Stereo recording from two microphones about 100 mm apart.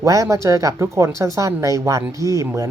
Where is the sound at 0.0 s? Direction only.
35° right (ahead or behind).